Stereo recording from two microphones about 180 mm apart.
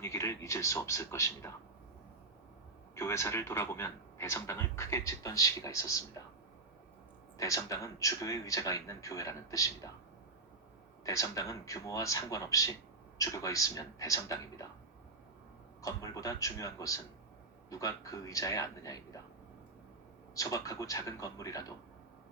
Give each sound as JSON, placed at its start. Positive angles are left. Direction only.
{"t": 0.0, "sound": "a man's voice", "side_deg": 15}
{"t": 2.9, "sound": "a man's voice", "side_deg": 15}
{"t": 7.3, "sound": "a man's voice", "side_deg": 15}
{"t": 11.0, "sound": "a man's voice", "side_deg": 20}
{"t": 15.8, "sound": "a man's voice", "side_deg": 20}
{"t": 20.3, "sound": "a man's voice", "side_deg": 20}